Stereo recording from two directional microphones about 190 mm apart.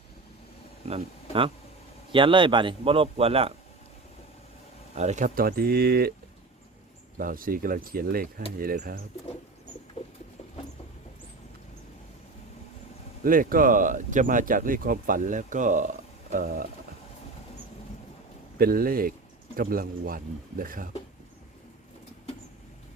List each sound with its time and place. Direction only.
0.9 s a man's voice: 30° right (ahead or behind)
4.9 s speech: 40° right (ahead or behind); by 6.1 s 55° right (ahead or behind)
7.2 s speech: 45° right (ahead or behind)
13.2 s speech: 45° right (ahead or behind)
18.6 s speech: 50° right (ahead or behind)